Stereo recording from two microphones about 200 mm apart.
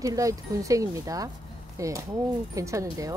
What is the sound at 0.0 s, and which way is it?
Speech, 15° right (ahead or behind).